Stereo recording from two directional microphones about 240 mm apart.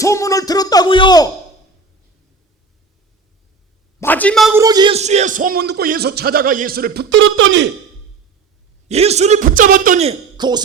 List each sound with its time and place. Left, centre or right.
0.0 s music: centre
4.0 s a man's voice: centre
4.5 s music: centre; by 7.7 s right
8.9 s a man's voice: right